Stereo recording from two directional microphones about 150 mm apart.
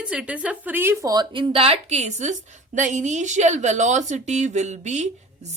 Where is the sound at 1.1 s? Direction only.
30° right (ahead or behind).